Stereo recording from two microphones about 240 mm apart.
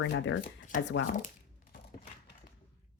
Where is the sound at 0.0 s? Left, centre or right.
Left.